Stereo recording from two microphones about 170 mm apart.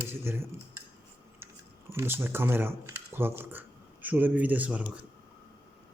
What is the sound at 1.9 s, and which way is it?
Speech, 15° right (ahead or behind).